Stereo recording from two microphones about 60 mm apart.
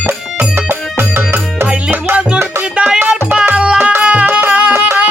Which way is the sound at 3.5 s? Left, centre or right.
Centre.